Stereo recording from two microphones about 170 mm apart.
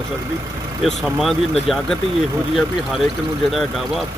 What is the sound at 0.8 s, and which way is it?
Speech, centre (ahead or behind).